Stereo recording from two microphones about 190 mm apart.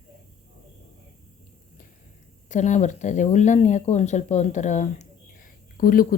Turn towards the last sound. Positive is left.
turn(degrees=50)  # may be behind; listen again after turning